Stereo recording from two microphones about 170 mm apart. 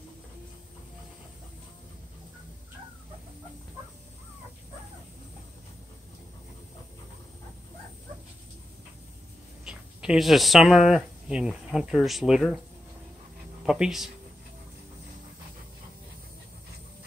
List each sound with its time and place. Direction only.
9.7 s speech: 5° right (ahead or behind)
13.7 s speech: 5° right (ahead or behind)